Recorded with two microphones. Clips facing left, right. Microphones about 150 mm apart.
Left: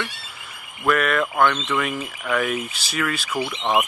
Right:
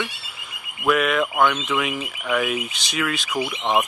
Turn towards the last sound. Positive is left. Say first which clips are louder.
# even
turn(degrees=-10)  # may be behind; listen again after turning